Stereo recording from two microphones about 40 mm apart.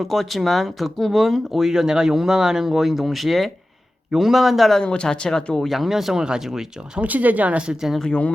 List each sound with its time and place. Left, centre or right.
0.0 s speech: centre
4.8 s speech: left
5.6 s speech: centre
7.0 s speech: right